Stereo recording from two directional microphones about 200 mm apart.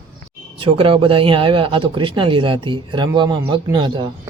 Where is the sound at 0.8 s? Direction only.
25° right (ahead or behind).